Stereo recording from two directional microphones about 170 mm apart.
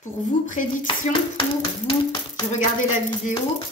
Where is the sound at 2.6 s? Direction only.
50° left (ahead or behind).